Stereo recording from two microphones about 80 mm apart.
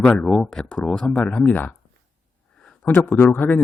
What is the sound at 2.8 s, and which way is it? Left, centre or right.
Speech, left.